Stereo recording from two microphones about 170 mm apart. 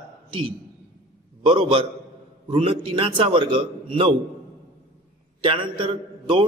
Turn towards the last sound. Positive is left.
turn(degrees=-30)  # may be behind; listen again after turning